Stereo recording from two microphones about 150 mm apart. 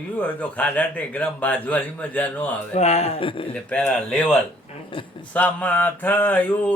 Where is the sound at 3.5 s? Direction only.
10° left (ahead or behind).